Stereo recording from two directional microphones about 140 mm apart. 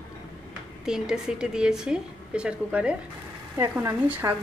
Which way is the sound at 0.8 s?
5° right (ahead or behind).